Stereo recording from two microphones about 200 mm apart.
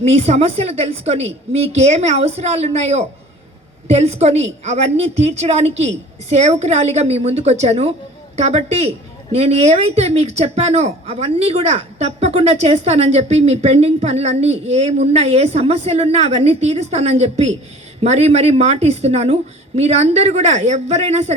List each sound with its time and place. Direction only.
0.0 s a woman's voice: 30° right (ahead or behind)